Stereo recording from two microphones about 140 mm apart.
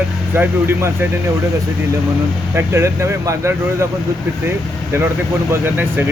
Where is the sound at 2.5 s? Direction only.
20° right (ahead or behind).